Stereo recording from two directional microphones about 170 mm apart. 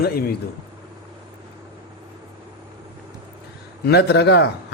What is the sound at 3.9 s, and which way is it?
Speech, 75° left (ahead or behind).